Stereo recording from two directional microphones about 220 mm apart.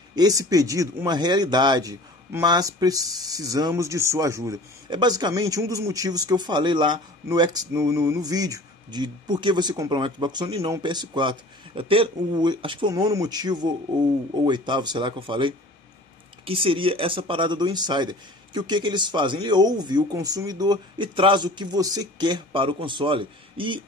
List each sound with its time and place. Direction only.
0.1 s speech: 15° right (ahead or behind)